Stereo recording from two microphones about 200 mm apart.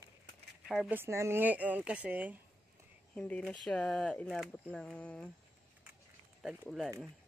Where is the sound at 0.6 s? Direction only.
Centre (ahead or behind).